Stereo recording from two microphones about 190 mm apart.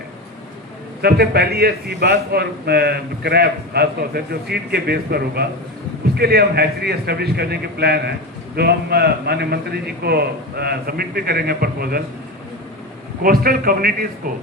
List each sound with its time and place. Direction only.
1.0 s a man's voice: 55° right (ahead or behind)
13.2 s a man's voice: 50° right (ahead or behind)